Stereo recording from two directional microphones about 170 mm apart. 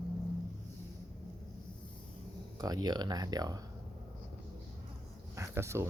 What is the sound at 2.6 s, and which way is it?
Speech, 20° right (ahead or behind).